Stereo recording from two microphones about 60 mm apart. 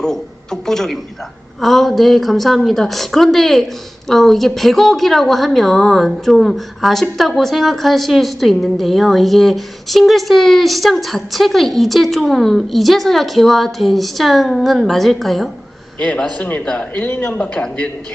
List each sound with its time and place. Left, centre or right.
0.0 s a woman's voice: centre
16.0 s a man's voice: centre